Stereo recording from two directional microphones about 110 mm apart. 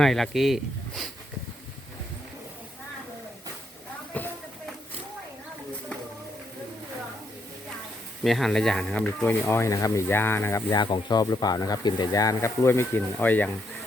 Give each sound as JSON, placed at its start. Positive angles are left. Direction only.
{"t": 0.0, "sound": "speech", "side_deg": 0}
{"t": 4.1, "sound": "a sound", "side_deg": 15}
{"t": 8.2, "sound": "speech", "side_deg": 0}
{"t": 10.8, "sound": "speech", "side_deg": 45}